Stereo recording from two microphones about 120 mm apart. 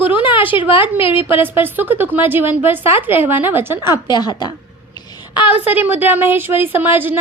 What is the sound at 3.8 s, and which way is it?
Speech, 35° left (ahead or behind).